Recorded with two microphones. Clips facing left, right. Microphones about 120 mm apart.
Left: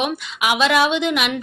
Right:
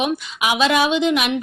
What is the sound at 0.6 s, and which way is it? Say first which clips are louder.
Speech: right 1 dB; 35° right (ahead or behind).